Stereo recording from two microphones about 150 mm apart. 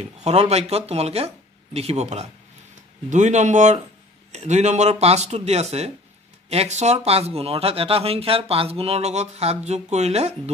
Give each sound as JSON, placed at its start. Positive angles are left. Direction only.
{"t": 0.0, "sound": "speech", "side_deg": -45}